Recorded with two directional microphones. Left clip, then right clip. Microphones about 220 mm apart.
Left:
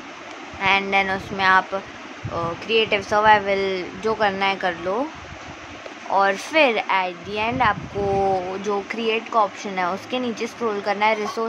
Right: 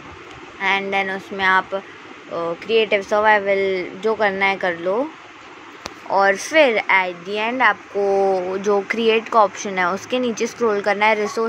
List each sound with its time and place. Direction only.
0.6 s speech: 5° right (ahead or behind)
6.1 s speech: 10° right (ahead or behind)